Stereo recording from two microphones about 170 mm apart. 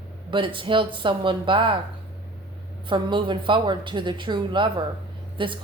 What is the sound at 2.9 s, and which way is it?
A woman's voice, 30° right (ahead or behind).